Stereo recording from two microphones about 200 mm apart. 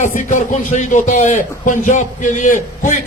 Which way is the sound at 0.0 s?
40° left (ahead or behind).